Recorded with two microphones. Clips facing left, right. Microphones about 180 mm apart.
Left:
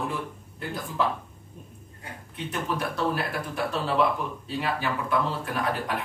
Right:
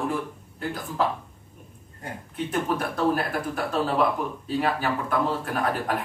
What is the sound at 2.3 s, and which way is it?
A man's voice, 50° right (ahead or behind).